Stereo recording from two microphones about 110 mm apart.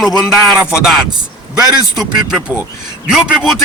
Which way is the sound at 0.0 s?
Centre (ahead or behind).